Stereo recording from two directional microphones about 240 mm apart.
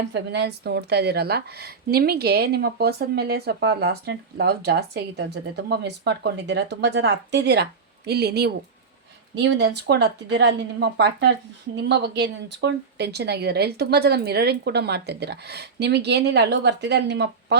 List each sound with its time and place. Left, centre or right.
0.1 s a woman's voice: right